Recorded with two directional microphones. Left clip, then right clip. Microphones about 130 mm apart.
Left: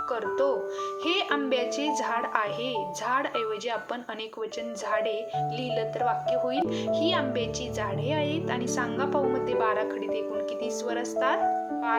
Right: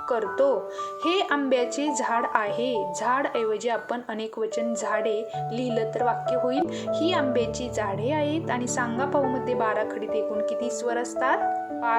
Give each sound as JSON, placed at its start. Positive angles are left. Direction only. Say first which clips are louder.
{"t": 0.1, "sound": "a woman's voice", "louder": "right 5 dB", "side_deg": -45}
{"t": 4.9, "sound": "a woman's voice", "louder": "left 2 dB", "side_deg": -45}